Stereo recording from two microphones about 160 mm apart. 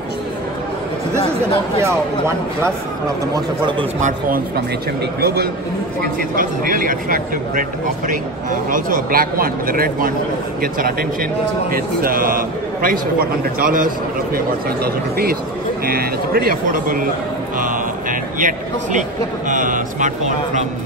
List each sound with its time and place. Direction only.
1.8 s speech: 15° right (ahead or behind)
5.2 s a man's voice: 80° right
6.3 s a man's voice: 60° right (ahead or behind)
8.6 s a man's voice: 60° right (ahead or behind)
18.4 s a man's voice: 50° right (ahead or behind)